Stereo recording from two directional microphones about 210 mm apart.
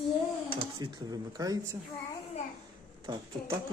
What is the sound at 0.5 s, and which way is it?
Speech, 20° right (ahead or behind).